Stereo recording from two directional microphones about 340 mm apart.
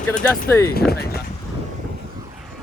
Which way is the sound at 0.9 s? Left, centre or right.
Left.